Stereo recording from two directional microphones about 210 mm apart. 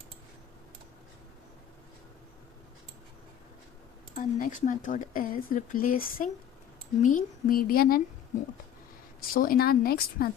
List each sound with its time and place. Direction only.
4.1 s speech: 40° left (ahead or behind)
9.3 s speech: 45° left (ahead or behind)